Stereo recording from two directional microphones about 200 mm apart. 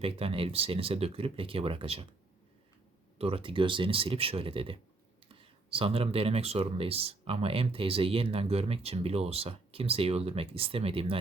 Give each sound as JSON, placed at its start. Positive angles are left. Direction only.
{"t": 0.0, "sound": "speech", "side_deg": -30}
{"t": 3.2, "sound": "speech", "side_deg": -30}